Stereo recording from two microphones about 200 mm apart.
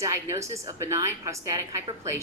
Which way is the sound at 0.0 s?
15° right (ahead or behind).